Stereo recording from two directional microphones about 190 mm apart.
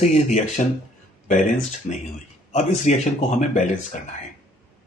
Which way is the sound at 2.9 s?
40° left (ahead or behind).